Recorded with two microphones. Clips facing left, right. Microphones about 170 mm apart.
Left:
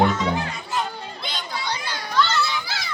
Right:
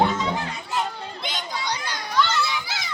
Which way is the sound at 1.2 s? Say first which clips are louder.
Right 1 dB; 15° right (ahead or behind).